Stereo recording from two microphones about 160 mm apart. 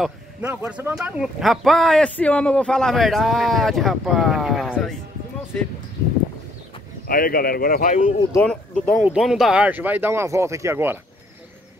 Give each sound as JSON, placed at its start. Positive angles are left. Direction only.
{"t": 0.0, "sound": "speech", "side_deg": -10}
{"t": 7.1, "sound": "a man's voice", "side_deg": 65}
{"t": 8.4, "sound": "speech", "side_deg": 5}